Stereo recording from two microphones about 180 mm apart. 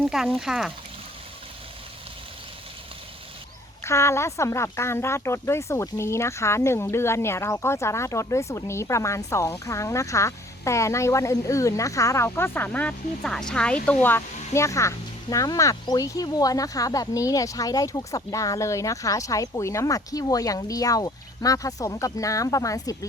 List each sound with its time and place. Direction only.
0.1 s speech: 5° right (ahead or behind)
3.8 s speech: 15° left (ahead or behind)